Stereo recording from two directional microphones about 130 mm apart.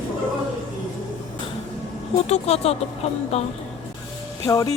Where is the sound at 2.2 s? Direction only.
55° left (ahead or behind).